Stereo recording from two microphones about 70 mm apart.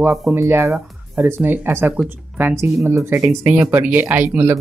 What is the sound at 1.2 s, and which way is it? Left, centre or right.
Speech, right.